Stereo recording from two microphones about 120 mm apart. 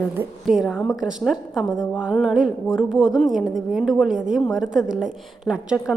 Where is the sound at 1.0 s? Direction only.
5° right (ahead or behind).